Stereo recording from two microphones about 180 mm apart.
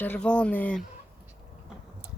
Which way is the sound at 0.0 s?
10° left (ahead or behind).